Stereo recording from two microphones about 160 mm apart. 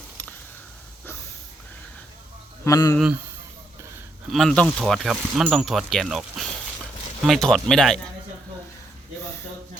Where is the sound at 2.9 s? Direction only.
5° right (ahead or behind).